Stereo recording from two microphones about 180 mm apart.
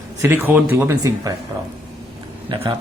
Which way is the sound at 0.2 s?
15° right (ahead or behind).